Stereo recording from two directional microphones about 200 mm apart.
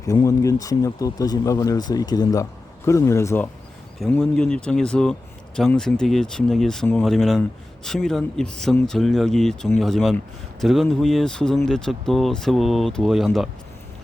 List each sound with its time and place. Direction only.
0.0 s speech: 15° left (ahead or behind); by 13.5 s centre (ahead or behind)